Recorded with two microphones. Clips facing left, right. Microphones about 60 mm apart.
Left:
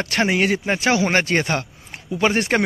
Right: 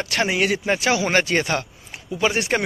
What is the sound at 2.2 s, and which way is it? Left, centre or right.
Speech, left.